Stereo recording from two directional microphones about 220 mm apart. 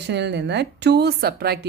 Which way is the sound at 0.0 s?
50° right (ahead or behind).